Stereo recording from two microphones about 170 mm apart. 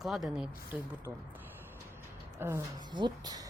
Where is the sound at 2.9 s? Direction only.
25° right (ahead or behind).